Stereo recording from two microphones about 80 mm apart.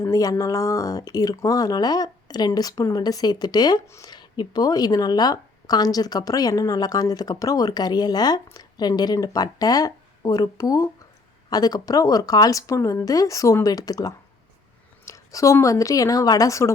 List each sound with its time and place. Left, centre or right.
0.0 s speech: left
15.0 s a sound: left
15.6 s speech: left